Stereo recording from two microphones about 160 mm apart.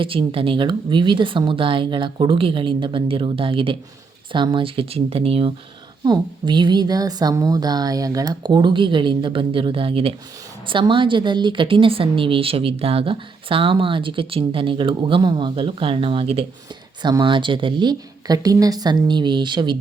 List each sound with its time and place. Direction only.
0.0 s a woman's voice: 35° right (ahead or behind)
6.1 s a woman's voice: 30° right (ahead or behind)
17.0 s a woman's voice: 25° right (ahead or behind)